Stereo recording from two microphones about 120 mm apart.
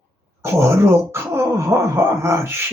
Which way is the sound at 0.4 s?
20° right (ahead or behind).